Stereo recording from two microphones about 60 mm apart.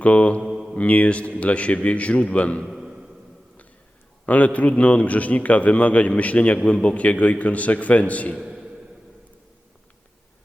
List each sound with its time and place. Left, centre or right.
0.0 s a man's voice: left
0.4 s mantra: centre
0.8 s a man's voice: left
2.6 s a sound: centre
4.3 s a man's voice: left
8.4 s a sound: centre